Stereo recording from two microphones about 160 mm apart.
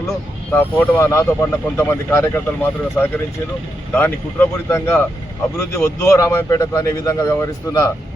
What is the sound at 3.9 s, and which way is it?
Speech, 15° left (ahead or behind).